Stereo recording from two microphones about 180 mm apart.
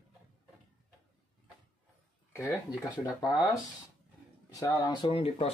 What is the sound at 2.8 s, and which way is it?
Speech, 20° left (ahead or behind).